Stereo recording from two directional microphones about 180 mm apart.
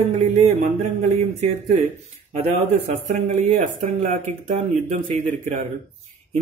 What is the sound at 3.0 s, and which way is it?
Speech, 40° right (ahead or behind).